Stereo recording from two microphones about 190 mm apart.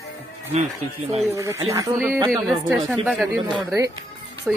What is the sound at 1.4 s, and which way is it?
A woman's voice, 15° right (ahead or behind).